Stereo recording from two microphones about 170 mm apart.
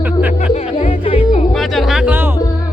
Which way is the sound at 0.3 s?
40° left (ahead or behind).